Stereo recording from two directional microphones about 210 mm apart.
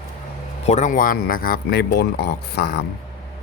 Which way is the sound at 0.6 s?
35° left (ahead or behind).